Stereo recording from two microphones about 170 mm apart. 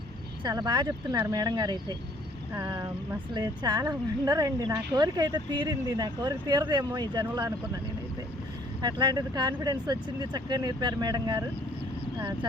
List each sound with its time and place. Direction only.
0.4 s speech: 25° right (ahead or behind)
8.8 s speech: 25° right (ahead or behind)